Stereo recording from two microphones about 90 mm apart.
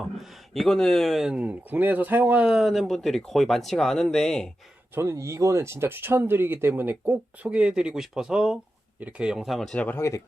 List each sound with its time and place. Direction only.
0.0 s speech: centre (ahead or behind)
1.4 s speech: 20° right (ahead or behind); by 4.4 s 5° left (ahead or behind)
4.9 s speech: 30° right (ahead or behind); by 9.8 s 5° left (ahead or behind)
9.8 s speech: 25° left (ahead or behind)